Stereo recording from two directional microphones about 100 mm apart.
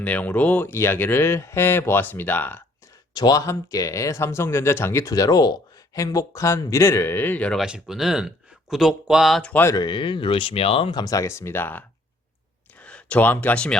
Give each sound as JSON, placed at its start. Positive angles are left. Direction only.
{"t": 0.0, "sound": "speech", "side_deg": 15}
{"t": 3.2, "sound": "speech", "side_deg": 40}
{"t": 7.5, "sound": "speech", "side_deg": -5}
{"t": 9.7, "sound": "speech", "side_deg": 50}
{"t": 10.9, "sound": "speech", "side_deg": 35}